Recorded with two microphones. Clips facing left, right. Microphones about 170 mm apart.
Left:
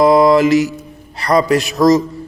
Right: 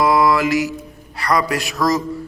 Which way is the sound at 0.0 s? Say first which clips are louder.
Left 6 dB; 25° left (ahead or behind).